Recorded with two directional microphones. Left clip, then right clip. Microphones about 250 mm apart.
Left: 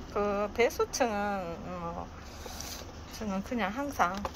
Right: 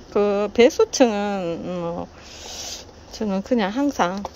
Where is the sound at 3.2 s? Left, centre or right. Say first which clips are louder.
Right 12 dB; right.